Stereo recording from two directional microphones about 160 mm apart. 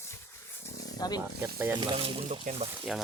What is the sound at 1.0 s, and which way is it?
Speech, 25° left (ahead or behind).